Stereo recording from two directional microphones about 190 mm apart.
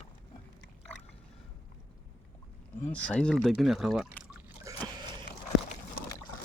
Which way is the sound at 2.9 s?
5° left (ahead or behind).